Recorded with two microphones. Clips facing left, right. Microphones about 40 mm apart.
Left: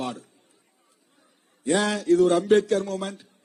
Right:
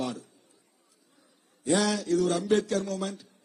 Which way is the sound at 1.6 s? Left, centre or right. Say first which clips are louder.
Left 2 dB; left.